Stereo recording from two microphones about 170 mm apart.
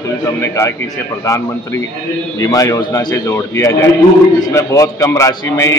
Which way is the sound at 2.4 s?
20° left (ahead or behind).